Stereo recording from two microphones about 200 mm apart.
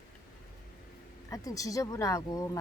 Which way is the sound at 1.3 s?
15° left (ahead or behind).